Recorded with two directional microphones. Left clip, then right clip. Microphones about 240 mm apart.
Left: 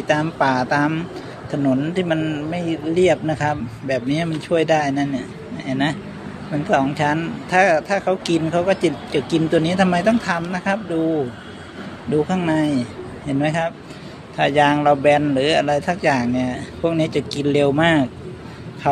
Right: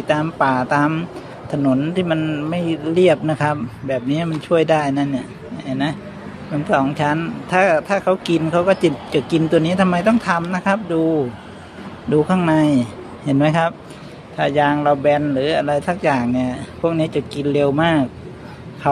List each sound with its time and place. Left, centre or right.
0.0 s a man's voice: centre
12.1 s speech: centre
14.3 s speech: centre